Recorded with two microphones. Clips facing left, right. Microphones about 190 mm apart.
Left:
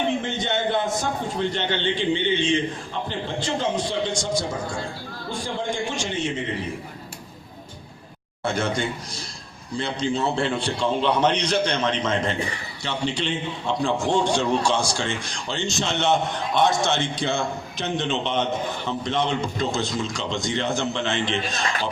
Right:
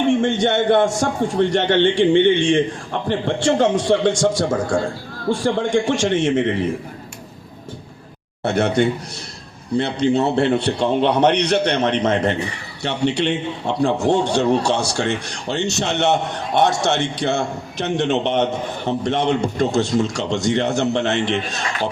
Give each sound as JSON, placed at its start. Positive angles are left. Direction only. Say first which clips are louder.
{"t": 0.2, "sound": "a man's voice", "louder": "right 8 dB", "side_deg": -75}
{"t": 8.4, "sound": "a man's voice", "louder": "right 7 dB", "side_deg": -65}